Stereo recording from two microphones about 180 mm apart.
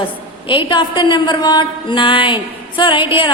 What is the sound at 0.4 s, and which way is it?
A woman's voice, 25° left (ahead or behind).